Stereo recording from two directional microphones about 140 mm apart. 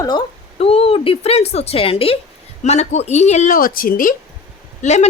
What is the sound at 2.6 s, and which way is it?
Speech, 55° left (ahead or behind).